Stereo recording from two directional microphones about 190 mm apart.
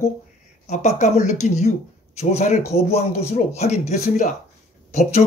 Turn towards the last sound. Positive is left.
turn(degrees=35)  # may be behind; listen again after turning